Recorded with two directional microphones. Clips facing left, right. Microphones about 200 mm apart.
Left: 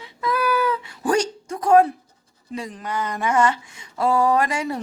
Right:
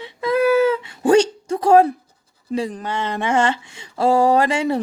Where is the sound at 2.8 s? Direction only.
30° right (ahead or behind).